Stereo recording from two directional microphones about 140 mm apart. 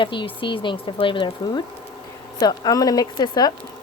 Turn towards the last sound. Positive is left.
turn(degrees=30)  # may be behind; listen again after turning